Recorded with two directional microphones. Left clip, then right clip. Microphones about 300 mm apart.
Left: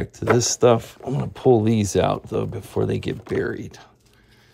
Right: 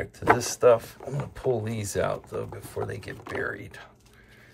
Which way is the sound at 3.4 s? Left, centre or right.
Centre.